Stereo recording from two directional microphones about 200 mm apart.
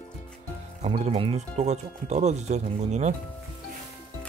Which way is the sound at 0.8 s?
35° right (ahead or behind).